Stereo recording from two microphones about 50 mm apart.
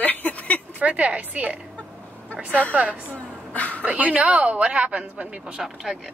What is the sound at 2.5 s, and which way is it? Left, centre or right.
A woman's voice, left.